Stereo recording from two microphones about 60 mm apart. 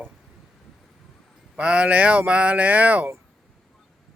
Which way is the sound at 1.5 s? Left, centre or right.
Centre.